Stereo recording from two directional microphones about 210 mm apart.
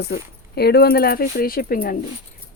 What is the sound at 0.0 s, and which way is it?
Speech, 50° left (ahead or behind).